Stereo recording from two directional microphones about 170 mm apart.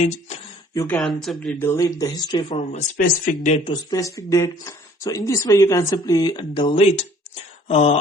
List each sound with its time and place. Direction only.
0.7 s speech: 20° left (ahead or behind)
0.9 s speech: centre (ahead or behind)
1.6 s speech: 20° left (ahead or behind)
2.7 s speech: 45° left (ahead or behind)
3.7 s speech: 25° left (ahead or behind)